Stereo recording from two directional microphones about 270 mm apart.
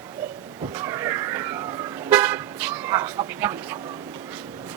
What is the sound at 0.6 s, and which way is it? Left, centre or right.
Vehicle, centre.